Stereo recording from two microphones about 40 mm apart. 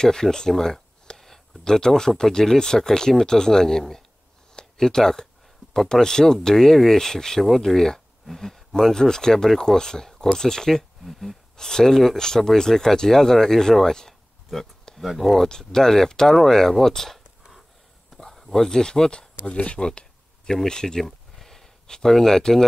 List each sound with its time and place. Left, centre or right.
0.0 s speech: centre
4.6 s a sound: centre
5.9 s speech: centre
11.1 s speech: centre
11.5 s speech: centre
15.4 s speech: centre
21.0 s a sound: centre